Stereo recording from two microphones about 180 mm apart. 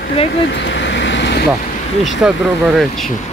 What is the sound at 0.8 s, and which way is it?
Vehicle, 80° left.